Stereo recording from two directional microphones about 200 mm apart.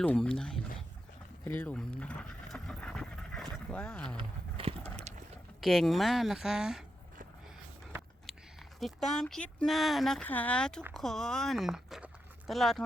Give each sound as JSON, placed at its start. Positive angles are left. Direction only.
{"t": 0.0, "sound": "speech", "side_deg": 5}
{"t": 4.5, "sound": "a sound", "side_deg": -30}
{"t": 5.5, "sound": "speech", "side_deg": 0}
{"t": 8.8, "sound": "speech", "side_deg": 0}